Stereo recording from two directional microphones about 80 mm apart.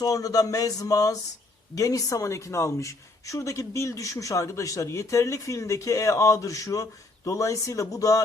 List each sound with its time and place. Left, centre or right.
0.0 s speech: left